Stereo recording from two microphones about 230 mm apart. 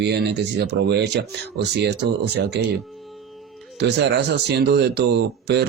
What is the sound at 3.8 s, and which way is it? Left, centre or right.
Speech, right.